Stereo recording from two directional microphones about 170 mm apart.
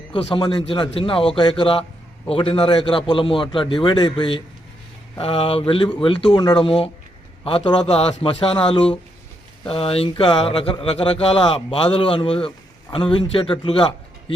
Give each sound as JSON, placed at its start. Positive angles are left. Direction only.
{"t": 0.1, "sound": "a man's voice", "side_deg": 25}